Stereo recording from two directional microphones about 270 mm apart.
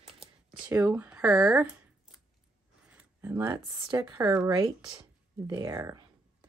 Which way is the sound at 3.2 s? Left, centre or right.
Centre.